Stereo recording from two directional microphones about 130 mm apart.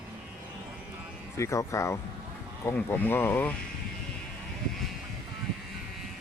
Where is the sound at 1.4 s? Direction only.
25° left (ahead or behind).